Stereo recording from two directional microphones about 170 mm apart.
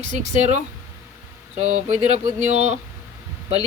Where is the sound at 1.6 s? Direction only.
45° right (ahead or behind).